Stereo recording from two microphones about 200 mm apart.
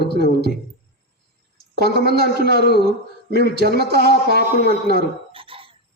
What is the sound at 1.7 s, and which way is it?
Speech, 50° right (ahead or behind).